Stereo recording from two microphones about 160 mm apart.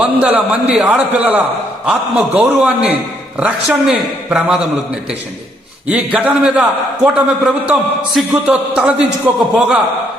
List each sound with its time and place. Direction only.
0.0 s a man's voice: 10° right (ahead or behind)
5.9 s a man's voice: 10° right (ahead or behind)